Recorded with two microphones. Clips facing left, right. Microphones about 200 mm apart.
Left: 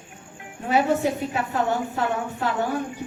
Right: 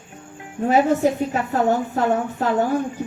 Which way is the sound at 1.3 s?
40° right (ahead or behind).